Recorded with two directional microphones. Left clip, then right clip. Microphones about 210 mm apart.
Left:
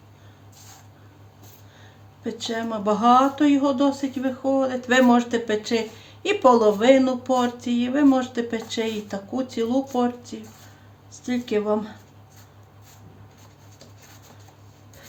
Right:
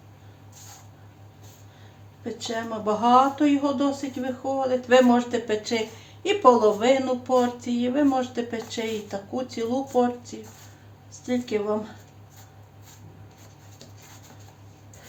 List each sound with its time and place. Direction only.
2.2 s speech: 30° left (ahead or behind)
11.3 s speech: 35° left (ahead or behind)